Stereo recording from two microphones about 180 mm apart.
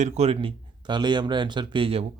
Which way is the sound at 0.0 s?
35° right (ahead or behind).